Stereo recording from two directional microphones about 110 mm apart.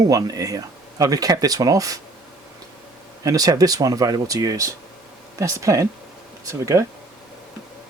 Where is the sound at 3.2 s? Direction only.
35° right (ahead or behind).